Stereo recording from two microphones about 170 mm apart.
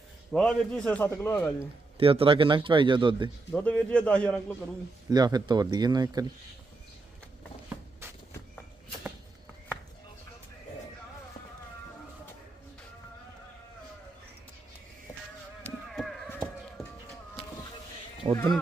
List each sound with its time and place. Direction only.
0.3 s a man's voice: centre (ahead or behind)
2.0 s speech: 35° right (ahead or behind)
3.5 s a man's voice: 5° left (ahead or behind)
5.0 s speech: 25° right (ahead or behind)
15.9 s a sound: centre (ahead or behind)
16.8 s music: centre (ahead or behind)
18.3 s speech: 30° right (ahead or behind)